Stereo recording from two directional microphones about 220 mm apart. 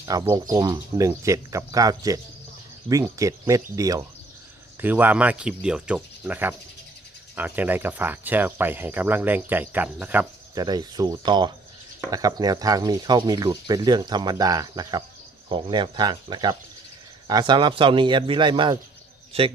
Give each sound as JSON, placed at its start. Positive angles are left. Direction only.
{"t": 0.0, "sound": "a man's voice", "side_deg": -15}